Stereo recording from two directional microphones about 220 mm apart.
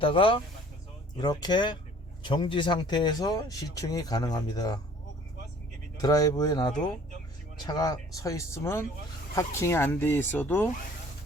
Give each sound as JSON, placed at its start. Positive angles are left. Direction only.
{"t": 0.0, "sound": "speech", "side_deg": 25}
{"t": 6.0, "sound": "speech", "side_deg": 15}